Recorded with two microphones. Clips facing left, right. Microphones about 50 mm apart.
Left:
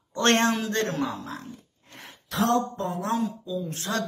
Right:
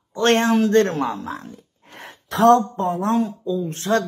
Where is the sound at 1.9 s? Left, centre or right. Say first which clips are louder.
Right 6 dB; right.